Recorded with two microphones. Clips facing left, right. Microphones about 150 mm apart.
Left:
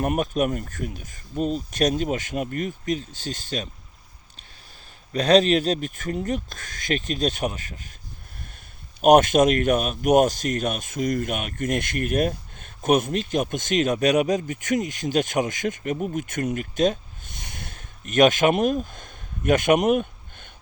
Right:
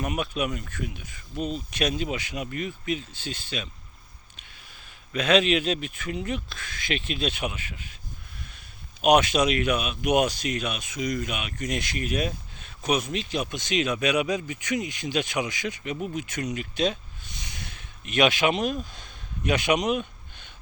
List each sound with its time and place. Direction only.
0.0 s speech: 45° left (ahead or behind)
5.1 s a man's voice: 40° left (ahead or behind)